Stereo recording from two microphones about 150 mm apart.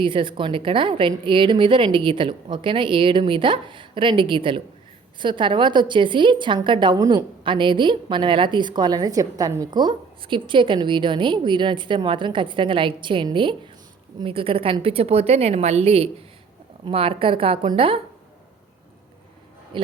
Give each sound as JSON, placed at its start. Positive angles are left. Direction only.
{"t": 0.0, "sound": "a woman's voice", "side_deg": -35}
{"t": 19.7, "sound": "speech", "side_deg": -35}